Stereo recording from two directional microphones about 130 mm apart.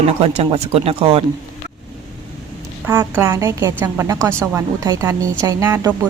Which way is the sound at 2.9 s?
20° right (ahead or behind).